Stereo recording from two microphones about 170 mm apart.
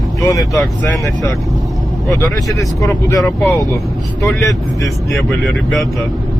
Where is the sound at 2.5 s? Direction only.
20° left (ahead or behind).